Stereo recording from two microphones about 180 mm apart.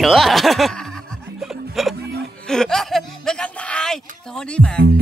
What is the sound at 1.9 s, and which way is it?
Music, 65° right (ahead or behind).